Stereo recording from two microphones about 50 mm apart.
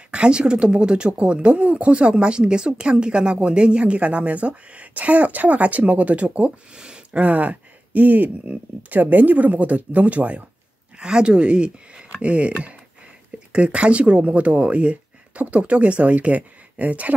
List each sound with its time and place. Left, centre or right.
0.1 s speech: centre
7.2 s speech: right
11.0 s speech: centre